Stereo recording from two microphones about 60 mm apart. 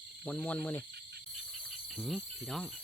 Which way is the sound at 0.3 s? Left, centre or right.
Left.